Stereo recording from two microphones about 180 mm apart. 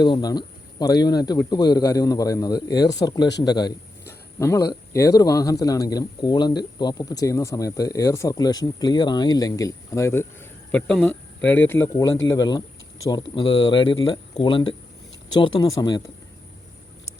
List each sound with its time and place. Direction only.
0.0 s speech: 25° left (ahead or behind)